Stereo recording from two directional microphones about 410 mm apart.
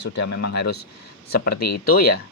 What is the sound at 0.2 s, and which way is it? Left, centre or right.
Speech, left.